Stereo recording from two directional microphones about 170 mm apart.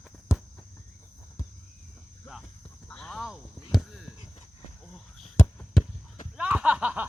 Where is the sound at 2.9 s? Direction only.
5° left (ahead or behind).